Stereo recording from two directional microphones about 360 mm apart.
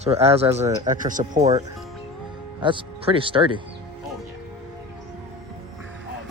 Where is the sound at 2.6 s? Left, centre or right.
Centre.